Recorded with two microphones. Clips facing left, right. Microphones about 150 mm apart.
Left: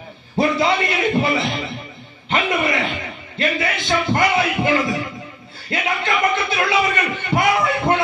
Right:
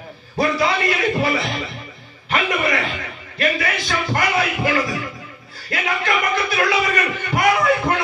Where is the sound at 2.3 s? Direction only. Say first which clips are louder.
Left 1 dB; 25° left (ahead or behind).